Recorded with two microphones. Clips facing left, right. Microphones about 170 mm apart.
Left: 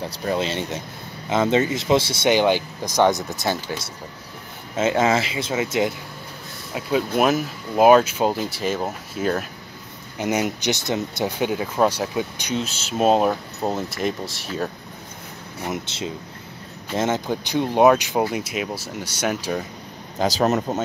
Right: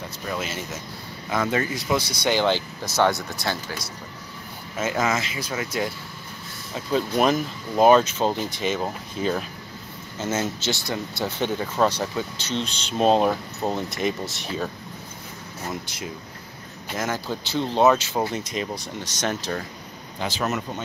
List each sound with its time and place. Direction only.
0.0 s speech: 35° left (ahead or behind)
6.7 s speech: 5° left (ahead or behind)
10.1 s speech: 15° left (ahead or behind); by 14.7 s centre (ahead or behind)
15.6 s speech: 20° left (ahead or behind)
20.2 s speech: 40° left (ahead or behind)